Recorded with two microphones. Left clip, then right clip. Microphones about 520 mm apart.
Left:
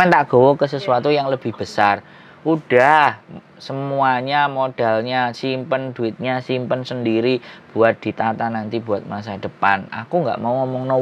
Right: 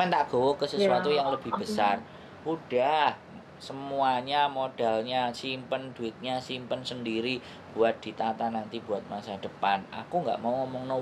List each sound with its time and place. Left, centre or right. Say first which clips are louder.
0.0 s speech: left 13 dB; left